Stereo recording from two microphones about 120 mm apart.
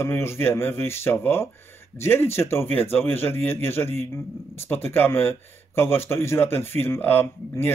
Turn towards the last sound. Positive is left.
turn(degrees=15)  # may be behind; listen again after turning